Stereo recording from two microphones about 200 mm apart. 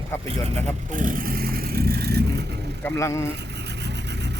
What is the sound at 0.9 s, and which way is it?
Vehicle, 40° right (ahead or behind).